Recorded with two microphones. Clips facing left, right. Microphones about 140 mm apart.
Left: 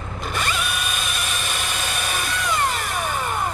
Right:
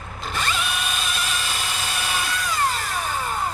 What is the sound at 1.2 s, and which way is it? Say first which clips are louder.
Vehicle: even; 55° left (ahead or behind).